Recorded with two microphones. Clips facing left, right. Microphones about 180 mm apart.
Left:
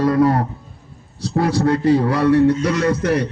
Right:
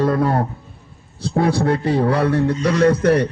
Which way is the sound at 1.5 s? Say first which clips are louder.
Left 3 dB; 60° right (ahead or behind).